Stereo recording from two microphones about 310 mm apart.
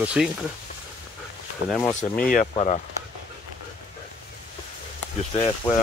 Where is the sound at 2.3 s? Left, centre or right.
Left.